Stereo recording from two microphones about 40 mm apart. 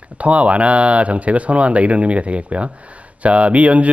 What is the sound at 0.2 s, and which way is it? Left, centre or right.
Speech, right.